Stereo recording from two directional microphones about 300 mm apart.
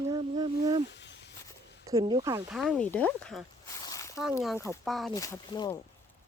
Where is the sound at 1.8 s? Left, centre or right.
Centre.